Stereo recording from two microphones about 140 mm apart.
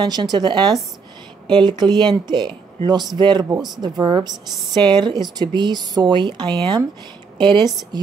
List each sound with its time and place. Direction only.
0.0 s speech: 30° right (ahead or behind)